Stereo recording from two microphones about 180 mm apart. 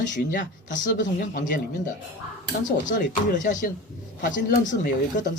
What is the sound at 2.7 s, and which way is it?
Speech, 45° left (ahead or behind).